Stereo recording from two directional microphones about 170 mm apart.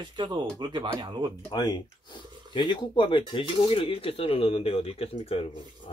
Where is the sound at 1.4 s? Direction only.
25° left (ahead or behind).